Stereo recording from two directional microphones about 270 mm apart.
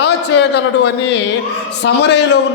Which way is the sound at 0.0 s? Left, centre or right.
Left.